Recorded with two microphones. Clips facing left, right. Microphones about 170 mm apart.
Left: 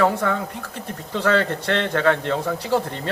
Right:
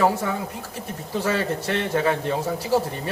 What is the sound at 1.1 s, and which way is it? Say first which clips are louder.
Speech: left 3 dB; 70° left (ahead or behind).